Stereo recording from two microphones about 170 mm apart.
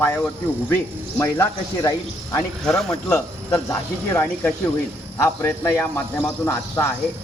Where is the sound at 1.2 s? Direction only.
15° left (ahead or behind).